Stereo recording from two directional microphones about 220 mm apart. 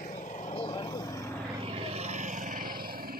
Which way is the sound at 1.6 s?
30° right (ahead or behind).